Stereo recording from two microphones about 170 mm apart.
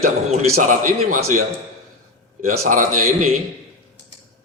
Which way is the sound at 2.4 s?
50° right (ahead or behind).